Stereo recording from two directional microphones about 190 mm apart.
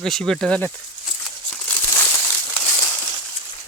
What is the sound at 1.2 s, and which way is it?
Crumpling, 10° left (ahead or behind).